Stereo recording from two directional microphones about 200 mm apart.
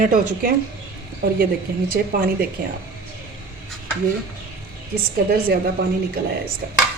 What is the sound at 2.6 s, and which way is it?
Speech, 45° right (ahead or behind).